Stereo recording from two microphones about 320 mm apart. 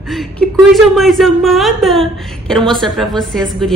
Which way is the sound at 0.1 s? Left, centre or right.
Centre.